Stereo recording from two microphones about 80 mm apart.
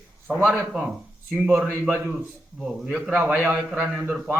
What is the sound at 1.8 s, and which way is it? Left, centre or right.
Speech, right.